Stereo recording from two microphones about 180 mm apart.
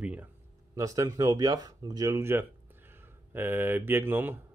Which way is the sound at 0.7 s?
20° right (ahead or behind).